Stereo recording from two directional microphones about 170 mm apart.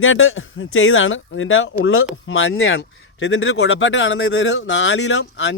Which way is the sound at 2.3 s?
90° left.